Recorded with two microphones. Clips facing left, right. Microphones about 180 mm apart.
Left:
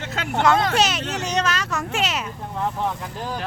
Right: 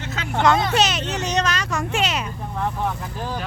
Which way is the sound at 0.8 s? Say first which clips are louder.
Right 1 dB; 10° left (ahead or behind).